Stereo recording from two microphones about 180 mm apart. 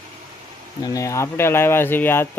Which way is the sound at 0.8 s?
20° left (ahead or behind).